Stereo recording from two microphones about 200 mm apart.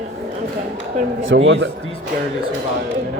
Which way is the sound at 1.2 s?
65° right (ahead or behind).